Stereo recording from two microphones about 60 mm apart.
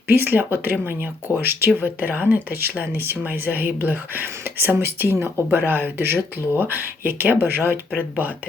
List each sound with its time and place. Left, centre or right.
0.1 s speech: right